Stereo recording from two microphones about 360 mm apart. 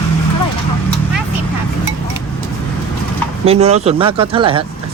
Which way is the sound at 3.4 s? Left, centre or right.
Centre.